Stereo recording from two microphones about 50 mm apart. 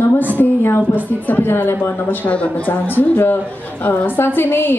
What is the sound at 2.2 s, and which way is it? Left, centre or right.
Speech, left.